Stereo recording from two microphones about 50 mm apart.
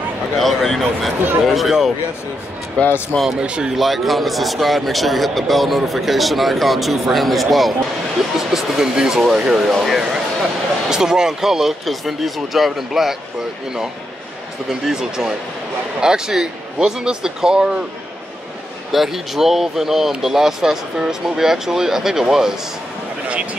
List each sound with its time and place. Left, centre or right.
0.4 s speech: centre
2.8 s speech: left
3.3 s speech: centre
3.7 s speech: centre
8.5 s speech: centre
14.7 s speech: centre
18.9 s speech: centre